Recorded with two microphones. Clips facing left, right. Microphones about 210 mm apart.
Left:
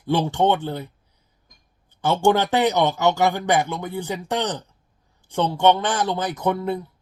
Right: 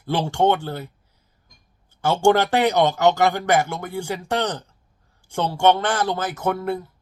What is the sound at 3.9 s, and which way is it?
Speech, 10° right (ahead or behind).